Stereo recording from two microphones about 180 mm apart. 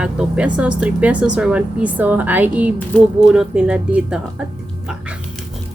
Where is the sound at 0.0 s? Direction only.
5° right (ahead or behind).